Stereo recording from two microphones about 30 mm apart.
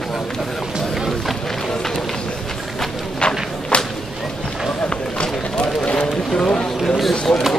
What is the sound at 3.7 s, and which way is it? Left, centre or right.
Whip, left.